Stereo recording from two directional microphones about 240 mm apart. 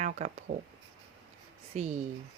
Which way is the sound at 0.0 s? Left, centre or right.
Right.